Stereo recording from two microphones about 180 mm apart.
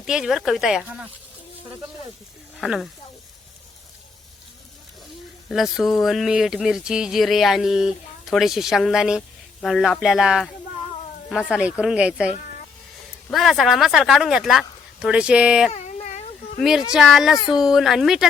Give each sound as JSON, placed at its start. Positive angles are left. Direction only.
{"t": 0.0, "sound": "speech", "side_deg": -5}
{"t": 2.6, "sound": "speech", "side_deg": 0}
{"t": 5.5, "sound": "speech", "side_deg": 0}
{"t": 13.3, "sound": "speech", "side_deg": 0}
{"t": 15.7, "sound": "a sound", "side_deg": 40}
{"t": 16.6, "sound": "speech", "side_deg": 0}